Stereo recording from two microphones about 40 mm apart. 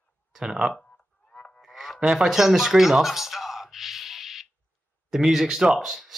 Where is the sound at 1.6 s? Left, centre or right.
Centre.